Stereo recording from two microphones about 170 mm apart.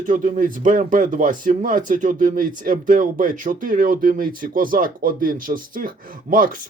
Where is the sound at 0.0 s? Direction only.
50° right (ahead or behind).